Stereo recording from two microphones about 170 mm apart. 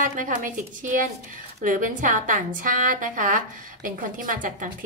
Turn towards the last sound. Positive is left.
turn(degrees=-50)  # may be behind; listen again after turning